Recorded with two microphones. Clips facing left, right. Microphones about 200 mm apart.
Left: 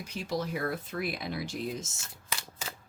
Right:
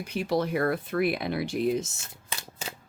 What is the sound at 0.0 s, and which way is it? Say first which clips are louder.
Speech: right 7 dB; 60° right (ahead or behind).